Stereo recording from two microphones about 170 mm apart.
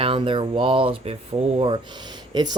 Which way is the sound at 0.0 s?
30° right (ahead or behind).